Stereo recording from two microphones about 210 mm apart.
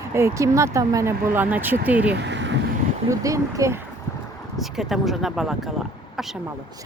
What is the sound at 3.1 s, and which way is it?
Speech, 15° right (ahead or behind).